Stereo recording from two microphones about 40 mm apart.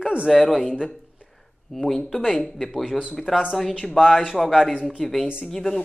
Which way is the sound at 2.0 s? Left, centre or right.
Centre.